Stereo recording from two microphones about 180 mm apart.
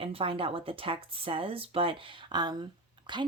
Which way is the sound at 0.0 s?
30° right (ahead or behind).